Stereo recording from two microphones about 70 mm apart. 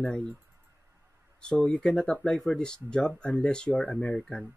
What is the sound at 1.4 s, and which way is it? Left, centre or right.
Speech, centre.